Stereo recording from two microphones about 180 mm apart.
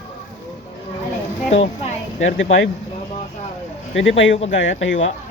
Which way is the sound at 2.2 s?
90° left.